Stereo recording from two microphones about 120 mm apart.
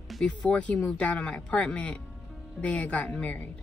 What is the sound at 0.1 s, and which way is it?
Speech, 5° left (ahead or behind).